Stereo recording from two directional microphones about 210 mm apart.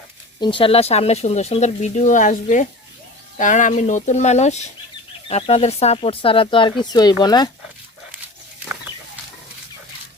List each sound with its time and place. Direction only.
0.3 s speech: 20° left (ahead or behind)